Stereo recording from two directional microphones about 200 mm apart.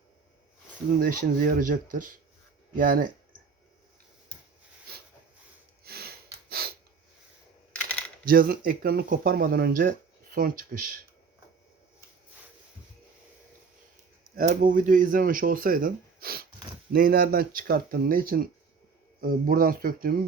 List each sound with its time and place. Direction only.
1.0 s speech: 45° right (ahead or behind)
5.8 s snort: 50° right (ahead or behind)
6.5 s a sound: 50° right (ahead or behind)
8.2 s speech: 45° right (ahead or behind)
14.3 s speech: 45° right (ahead or behind)